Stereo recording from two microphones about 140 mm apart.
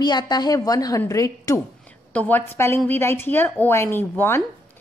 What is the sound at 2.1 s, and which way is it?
A woman's voice, 10° left (ahead or behind).